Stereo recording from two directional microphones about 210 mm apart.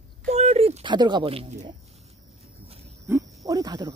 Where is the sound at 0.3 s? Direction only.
30° right (ahead or behind).